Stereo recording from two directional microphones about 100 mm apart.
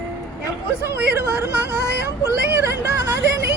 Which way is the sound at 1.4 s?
25° right (ahead or behind).